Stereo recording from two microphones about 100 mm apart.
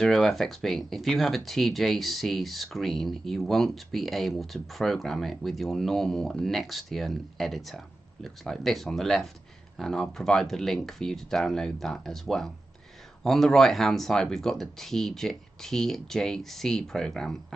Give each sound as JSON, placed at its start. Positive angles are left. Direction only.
{"t": 0.0, "sound": "speech", "side_deg": 5}